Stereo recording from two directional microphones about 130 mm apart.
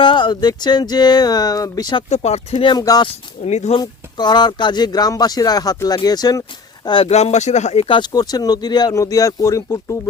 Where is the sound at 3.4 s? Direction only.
60° left (ahead or behind).